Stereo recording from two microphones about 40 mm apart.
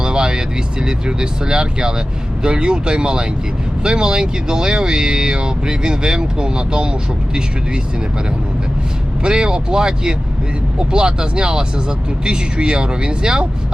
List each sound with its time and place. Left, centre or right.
0.0 s speech: centre
9.2 s speech: right